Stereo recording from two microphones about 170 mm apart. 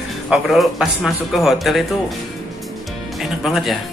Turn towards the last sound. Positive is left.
turn(degrees=0)  # may be behind; listen again after turning